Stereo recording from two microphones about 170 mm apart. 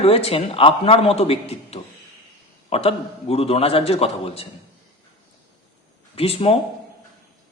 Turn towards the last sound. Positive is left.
turn(degrees=35)  # may be behind; listen again after turning